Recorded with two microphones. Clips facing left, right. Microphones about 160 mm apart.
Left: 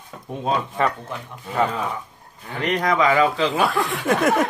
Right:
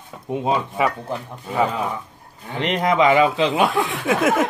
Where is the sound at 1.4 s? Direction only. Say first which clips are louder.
Right 1 dB; 10° right (ahead or behind).